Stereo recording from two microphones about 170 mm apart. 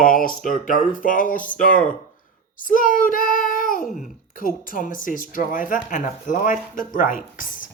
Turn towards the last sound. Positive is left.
turn(degrees=55)  # may be behind; listen again after turning